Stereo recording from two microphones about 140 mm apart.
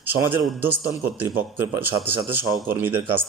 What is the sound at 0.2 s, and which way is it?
A man's voice, 15° right (ahead or behind).